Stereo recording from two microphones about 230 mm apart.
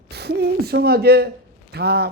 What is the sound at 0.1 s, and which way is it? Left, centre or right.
A woman's voice, right.